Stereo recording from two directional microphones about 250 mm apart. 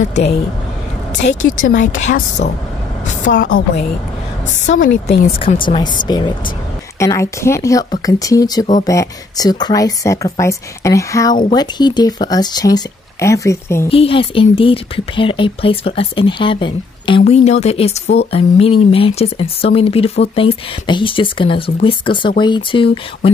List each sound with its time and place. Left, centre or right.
0.0 s speech: left; by 13.8 s centre
13.8 s speech: left